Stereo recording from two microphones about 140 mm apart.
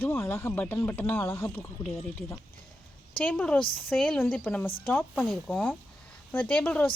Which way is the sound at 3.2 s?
10° left (ahead or behind).